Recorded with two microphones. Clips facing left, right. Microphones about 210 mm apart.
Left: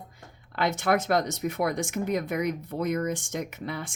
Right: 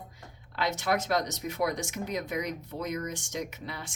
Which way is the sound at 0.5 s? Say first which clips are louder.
Left 4 dB; 55° left (ahead or behind).